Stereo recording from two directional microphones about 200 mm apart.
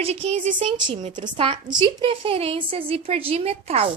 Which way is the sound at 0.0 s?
30° right (ahead or behind).